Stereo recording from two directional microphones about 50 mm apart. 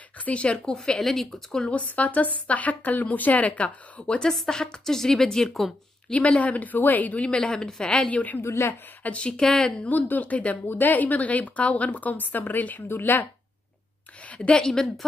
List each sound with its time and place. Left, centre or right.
0.2 s speech: left; by 1.7 s centre
1.7 s a woman's voice: left
4.3 s speech: centre
6.1 s a woman's voice: left
7.2 s speech: centre
8.1 s a woman's voice: left
8.4 s a woman's voice: left
9.0 s speech: left
9.4 s speech: centre
9.8 s a woman's voice: left
12.8 s speech: left
14.4 s a woman's voice: centre
14.7 s speech: centre